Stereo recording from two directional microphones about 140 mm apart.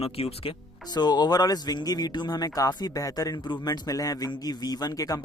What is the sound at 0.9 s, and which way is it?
Speech, 30° left (ahead or behind).